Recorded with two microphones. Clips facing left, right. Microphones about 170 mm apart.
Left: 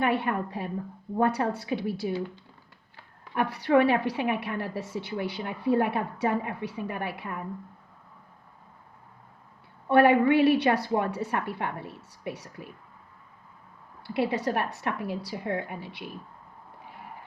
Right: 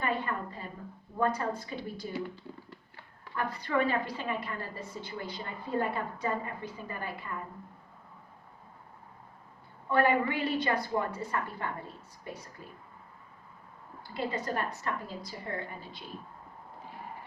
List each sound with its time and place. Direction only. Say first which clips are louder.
0.0 s a woman's voice: left 6 dB; 70° left (ahead or behind)
3.3 s a woman's voice: left 8 dB; 75° left (ahead or behind)
9.9 s a woman's voice: left 7 dB; 75° left (ahead or behind)
14.0 s a woman's voice: left 7 dB; 75° left (ahead or behind)